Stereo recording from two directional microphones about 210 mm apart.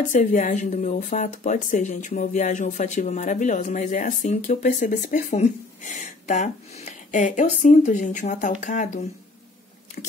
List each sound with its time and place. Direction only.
0.1 s speech: 35° left (ahead or behind)